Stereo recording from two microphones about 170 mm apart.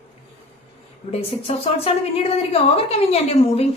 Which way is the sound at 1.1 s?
35° left (ahead or behind).